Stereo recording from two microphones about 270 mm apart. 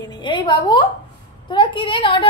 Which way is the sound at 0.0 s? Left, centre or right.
Centre.